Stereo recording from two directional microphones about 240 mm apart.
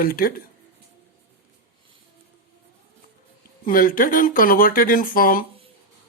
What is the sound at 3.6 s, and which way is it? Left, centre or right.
Speech, left.